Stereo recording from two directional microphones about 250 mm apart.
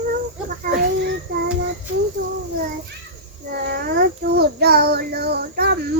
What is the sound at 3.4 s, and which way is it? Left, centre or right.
A child's voice, right.